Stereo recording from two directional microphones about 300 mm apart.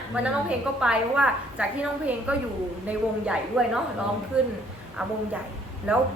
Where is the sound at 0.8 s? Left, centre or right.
Centre.